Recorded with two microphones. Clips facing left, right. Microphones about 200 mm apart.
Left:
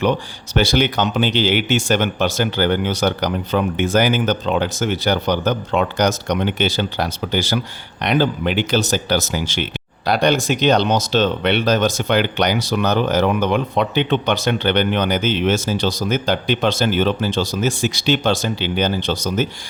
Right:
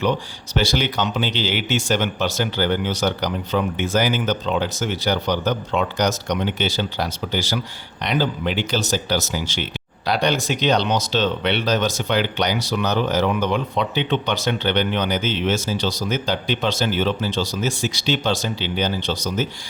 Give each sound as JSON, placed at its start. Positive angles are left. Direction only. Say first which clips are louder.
{"t": 0.5, "sound": "speech", "louder": "left 4 dB", "side_deg": 55}